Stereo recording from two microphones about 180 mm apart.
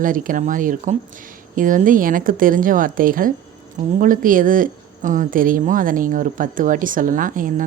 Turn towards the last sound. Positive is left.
turn(degrees=-50)  # may be behind; listen again after turning